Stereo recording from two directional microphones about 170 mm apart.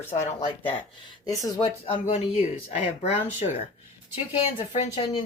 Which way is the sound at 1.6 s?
35° left (ahead or behind).